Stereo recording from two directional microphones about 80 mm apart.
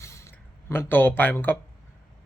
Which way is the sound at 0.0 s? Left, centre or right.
Left.